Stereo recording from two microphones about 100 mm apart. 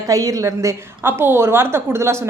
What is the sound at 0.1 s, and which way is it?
A woman's voice, 35° right (ahead or behind).